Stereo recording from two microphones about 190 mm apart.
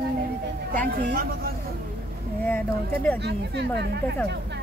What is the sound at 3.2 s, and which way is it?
Speech, 60° right (ahead or behind).